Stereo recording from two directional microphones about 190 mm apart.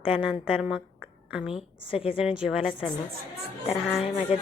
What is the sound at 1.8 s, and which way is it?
Speech, 30° left (ahead or behind).